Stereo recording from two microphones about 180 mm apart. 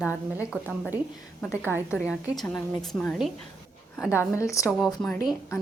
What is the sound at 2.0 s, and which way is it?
A woman's voice, centre (ahead or behind).